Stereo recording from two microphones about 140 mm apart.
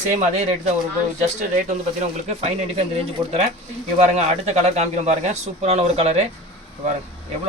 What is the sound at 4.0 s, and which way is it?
Speech, 50° right (ahead or behind).